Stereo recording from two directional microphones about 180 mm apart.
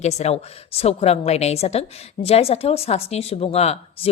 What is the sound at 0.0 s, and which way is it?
Speech, 40° left (ahead or behind).